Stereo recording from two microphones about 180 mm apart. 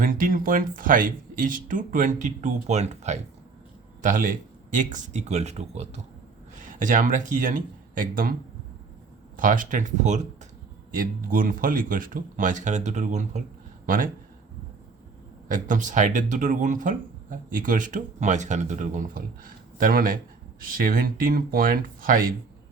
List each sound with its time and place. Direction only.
0.0 s speech: 50° right (ahead or behind)
9.4 s speech: 50° right (ahead or behind)
15.4 s speech: 45° right (ahead or behind)